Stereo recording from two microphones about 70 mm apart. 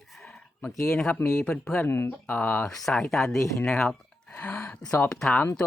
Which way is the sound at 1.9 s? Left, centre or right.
Left.